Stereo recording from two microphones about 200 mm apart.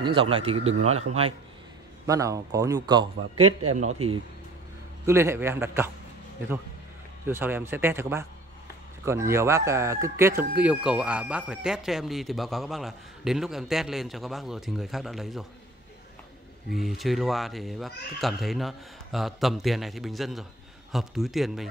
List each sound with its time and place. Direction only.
0.0 s a man's voice: 25° right (ahead or behind)
2.0 s speech: 15° right (ahead or behind)
3.3 s a man's voice: 90° right
4.0 s a man's voice: 30° right (ahead or behind)
5.0 s speech: 10° right (ahead or behind)
7.2 s speech: 10° right (ahead or behind)
16.7 s speech: centre (ahead or behind)